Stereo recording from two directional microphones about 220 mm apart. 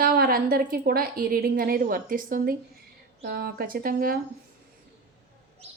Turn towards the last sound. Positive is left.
turn(degrees=-40)  # may be behind; listen again after turning